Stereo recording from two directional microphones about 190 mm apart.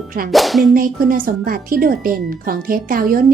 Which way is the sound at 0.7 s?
45° right (ahead or behind).